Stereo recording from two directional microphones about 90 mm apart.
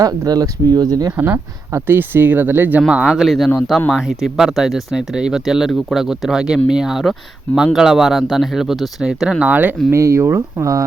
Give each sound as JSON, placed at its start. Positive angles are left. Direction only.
{"t": 0.0, "sound": "speech", "side_deg": -45}
{"t": 1.1, "sound": "speech", "side_deg": -20}
{"t": 2.9, "sound": "speech", "side_deg": -10}
{"t": 3.2, "sound": "speech", "side_deg": 0}
{"t": 9.9, "sound": "speech", "side_deg": -35}